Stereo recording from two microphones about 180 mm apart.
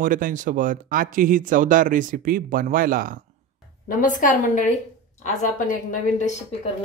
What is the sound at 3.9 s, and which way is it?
A woman's voice, 45° left (ahead or behind).